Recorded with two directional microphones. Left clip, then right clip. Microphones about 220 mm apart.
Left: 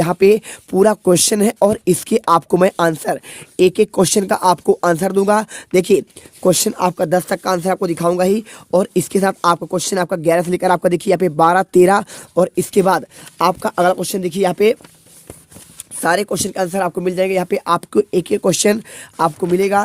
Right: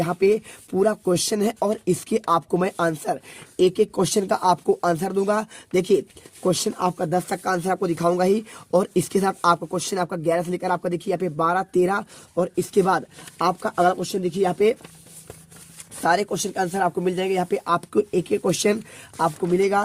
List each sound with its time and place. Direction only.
0.0 s speech: 45° left (ahead or behind)
16.0 s speech: 35° left (ahead or behind)